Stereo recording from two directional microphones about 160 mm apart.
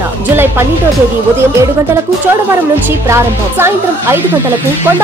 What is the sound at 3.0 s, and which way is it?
A woman's voice, 15° right (ahead or behind).